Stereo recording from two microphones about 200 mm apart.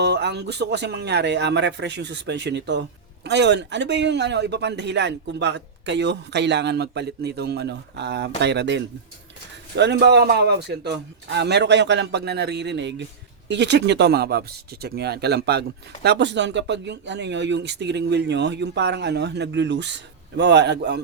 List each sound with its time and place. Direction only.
0.0 s a man's voice: 60° right (ahead or behind)